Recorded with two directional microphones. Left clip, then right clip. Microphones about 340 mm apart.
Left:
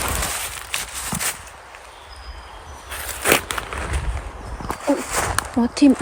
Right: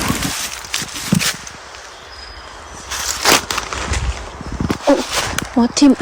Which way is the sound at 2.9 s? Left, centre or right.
Centre.